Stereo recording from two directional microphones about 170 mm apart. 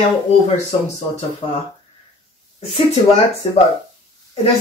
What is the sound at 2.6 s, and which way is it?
Speech, 40° left (ahead or behind).